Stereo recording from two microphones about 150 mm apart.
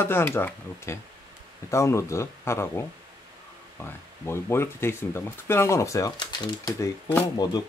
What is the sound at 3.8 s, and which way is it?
Speech, 15° left (ahead or behind).